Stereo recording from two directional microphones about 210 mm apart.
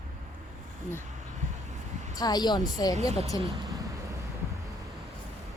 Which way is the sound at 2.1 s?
20° left (ahead or behind).